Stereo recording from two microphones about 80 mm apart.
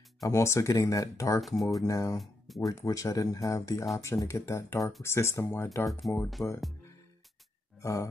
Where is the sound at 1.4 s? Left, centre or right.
Centre.